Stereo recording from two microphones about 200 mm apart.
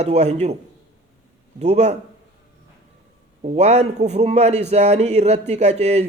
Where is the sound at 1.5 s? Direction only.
35° right (ahead or behind).